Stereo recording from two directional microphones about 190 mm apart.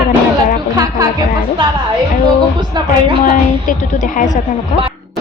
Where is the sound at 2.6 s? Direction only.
25° right (ahead or behind).